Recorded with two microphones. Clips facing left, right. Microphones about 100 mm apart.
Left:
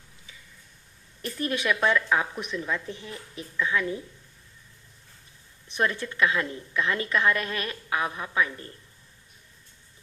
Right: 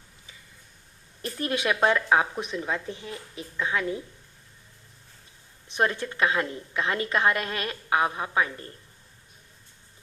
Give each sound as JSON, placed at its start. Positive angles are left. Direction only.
{"t": 1.2, "sound": "speech", "side_deg": -35}
{"t": 5.7, "sound": "a woman's voice", "side_deg": -35}